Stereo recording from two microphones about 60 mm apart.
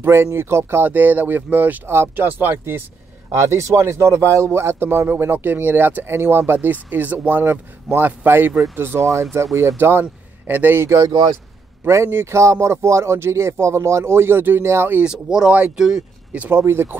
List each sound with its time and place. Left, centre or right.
0.0 s speech: right
0.8 s speech: right
3.3 s speech: right
9.4 s speech: right
9.8 s speech: right
11.9 s speech: right
15.0 s speech: centre
16.4 s speech: right